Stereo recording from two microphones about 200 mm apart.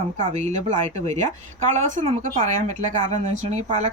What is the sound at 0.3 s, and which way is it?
Speech, 35° right (ahead or behind).